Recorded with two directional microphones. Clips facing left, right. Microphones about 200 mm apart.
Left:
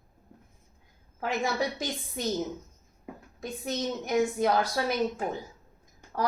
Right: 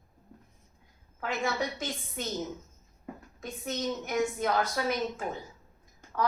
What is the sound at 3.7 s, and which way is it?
A woman's voice, 35° left (ahead or behind).